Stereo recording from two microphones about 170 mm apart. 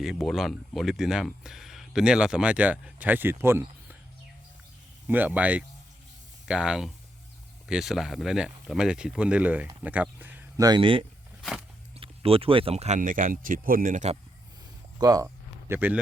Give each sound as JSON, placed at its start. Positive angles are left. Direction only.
{"t": 0.0, "sound": "speech", "side_deg": 0}
{"t": 5.0, "sound": "speech", "side_deg": -10}
{"t": 10.6, "sound": "speech", "side_deg": -25}
{"t": 14.9, "sound": "speech", "side_deg": -20}
{"t": 15.7, "sound": "speech", "side_deg": -10}